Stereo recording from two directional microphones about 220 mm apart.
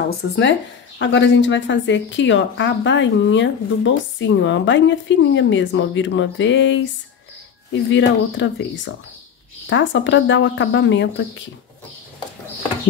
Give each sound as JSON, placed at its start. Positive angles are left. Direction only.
{"t": 0.4, "sound": "a woman's voice", "side_deg": 55}
{"t": 7.9, "sound": "a woman's voice", "side_deg": 55}